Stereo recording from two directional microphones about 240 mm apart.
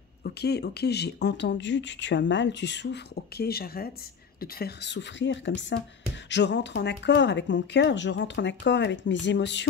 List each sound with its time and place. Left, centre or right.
0.2 s speech: left